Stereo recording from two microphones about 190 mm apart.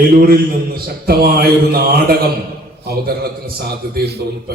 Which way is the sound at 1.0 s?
55° right (ahead or behind).